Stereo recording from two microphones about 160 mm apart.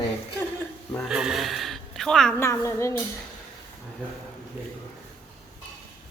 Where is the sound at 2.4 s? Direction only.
15° left (ahead or behind).